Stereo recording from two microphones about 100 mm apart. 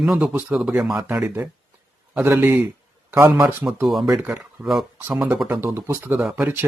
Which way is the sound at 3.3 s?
40° right (ahead or behind).